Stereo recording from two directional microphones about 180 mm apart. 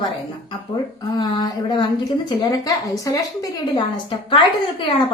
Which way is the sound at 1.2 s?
25° left (ahead or behind).